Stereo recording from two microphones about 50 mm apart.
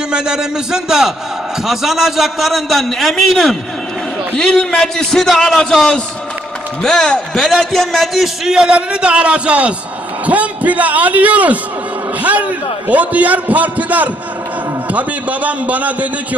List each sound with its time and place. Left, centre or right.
0.1 s a man's voice: centre
8.7 s a man's voice: right